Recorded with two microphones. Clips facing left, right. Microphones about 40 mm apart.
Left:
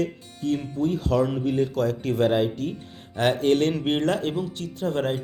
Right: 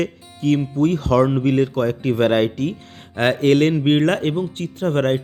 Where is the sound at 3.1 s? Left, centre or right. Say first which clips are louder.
Right 5 dB; right.